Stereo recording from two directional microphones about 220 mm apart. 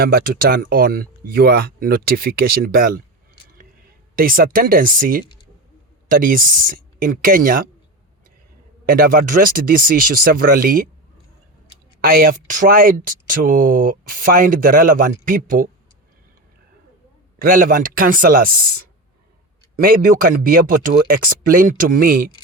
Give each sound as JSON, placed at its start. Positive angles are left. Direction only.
{"t": 0.0, "sound": "speech", "side_deg": -40}
{"t": 4.1, "sound": "speech", "side_deg": -40}
{"t": 5.2, "sound": "speech", "side_deg": 20}
{"t": 6.1, "sound": "speech", "side_deg": -40}
{"t": 8.9, "sound": "speech", "side_deg": -40}
{"t": 12.0, "sound": "speech", "side_deg": -40}
{"t": 17.4, "sound": "speech", "side_deg": -40}